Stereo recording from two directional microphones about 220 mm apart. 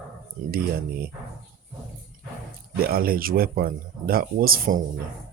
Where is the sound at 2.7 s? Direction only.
45° right (ahead or behind).